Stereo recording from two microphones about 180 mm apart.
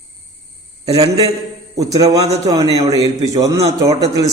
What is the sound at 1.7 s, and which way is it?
A man's voice, 20° right (ahead or behind).